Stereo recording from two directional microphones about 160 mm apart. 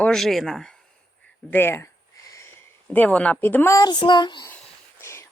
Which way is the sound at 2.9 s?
10° left (ahead or behind).